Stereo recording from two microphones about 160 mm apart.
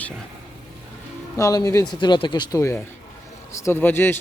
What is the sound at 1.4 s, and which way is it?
A man's voice, 20° left (ahead or behind).